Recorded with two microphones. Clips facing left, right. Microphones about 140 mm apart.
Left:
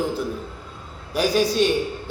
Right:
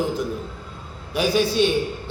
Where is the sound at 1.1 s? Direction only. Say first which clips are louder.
Even; 40° left (ahead or behind).